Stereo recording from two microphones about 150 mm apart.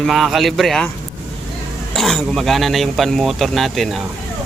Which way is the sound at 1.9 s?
Centre (ahead or behind).